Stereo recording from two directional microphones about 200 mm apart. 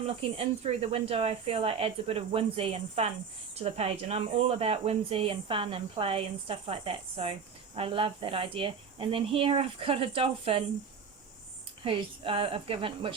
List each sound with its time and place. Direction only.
0.3 s speech: 30° right (ahead or behind)
11.8 s speech: 25° right (ahead or behind)